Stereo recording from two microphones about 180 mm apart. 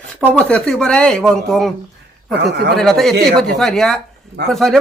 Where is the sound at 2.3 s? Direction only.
65° right (ahead or behind).